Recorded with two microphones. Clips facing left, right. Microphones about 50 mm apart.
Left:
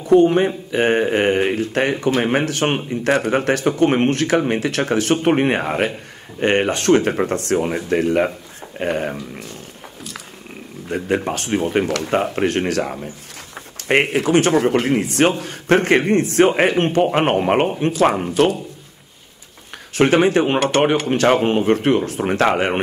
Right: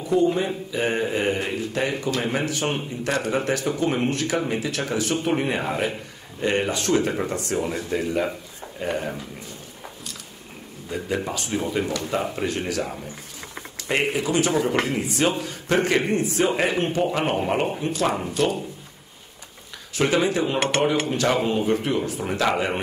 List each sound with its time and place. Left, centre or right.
0.0 s speech: left
10.9 s speech: left
20.0 s speech: left